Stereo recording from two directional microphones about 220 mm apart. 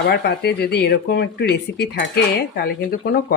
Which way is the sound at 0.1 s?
45° left (ahead or behind).